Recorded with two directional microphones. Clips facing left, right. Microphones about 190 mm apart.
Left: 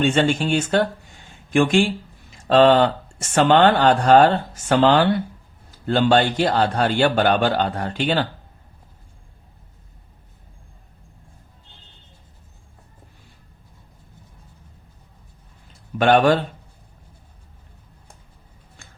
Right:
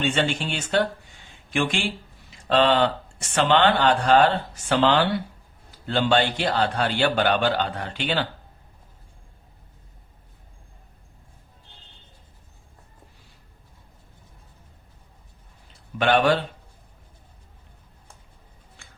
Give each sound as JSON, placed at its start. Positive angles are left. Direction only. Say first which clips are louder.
{"t": 0.0, "sound": "speech", "louder": "left 6 dB", "side_deg": 45}
{"t": 16.0, "sound": "speech", "louder": "left 4 dB", "side_deg": 45}